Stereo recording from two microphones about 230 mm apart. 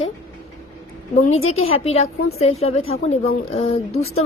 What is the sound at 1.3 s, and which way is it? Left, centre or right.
Speech, left.